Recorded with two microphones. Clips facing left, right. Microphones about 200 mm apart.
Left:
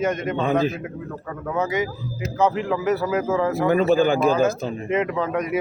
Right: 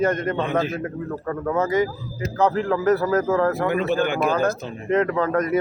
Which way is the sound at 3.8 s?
35° left (ahead or behind).